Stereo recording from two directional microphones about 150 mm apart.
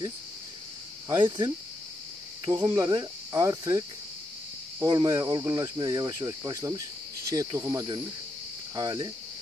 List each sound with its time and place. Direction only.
1.0 s speech: 35° right (ahead or behind)
2.5 s cricket: 25° right (ahead or behind)